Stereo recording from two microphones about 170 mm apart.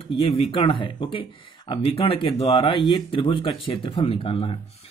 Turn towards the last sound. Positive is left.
turn(degrees=30)  # may be behind; listen again after turning